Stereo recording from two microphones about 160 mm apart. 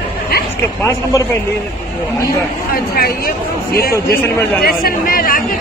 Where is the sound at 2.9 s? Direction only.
70° left (ahead or behind).